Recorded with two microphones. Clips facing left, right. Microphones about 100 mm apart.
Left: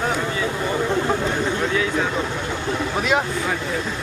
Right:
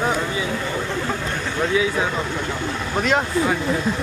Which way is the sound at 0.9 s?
20° left (ahead or behind).